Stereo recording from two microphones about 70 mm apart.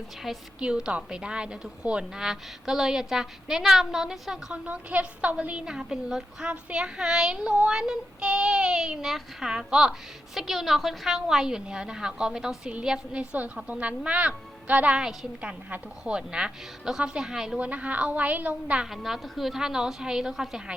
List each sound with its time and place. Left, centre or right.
0.3 s a woman's voice: centre
4.5 s a woman's voice: centre
17.7 s a woman's voice: centre
18.9 s a woman's voice: centre